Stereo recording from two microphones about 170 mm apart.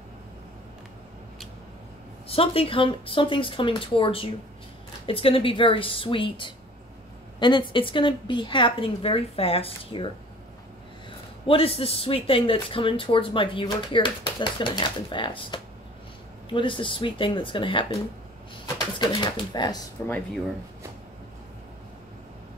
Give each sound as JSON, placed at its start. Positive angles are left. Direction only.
{"t": 2.2, "sound": "speech", "side_deg": 35}
{"t": 18.9, "sound": "speech", "side_deg": 30}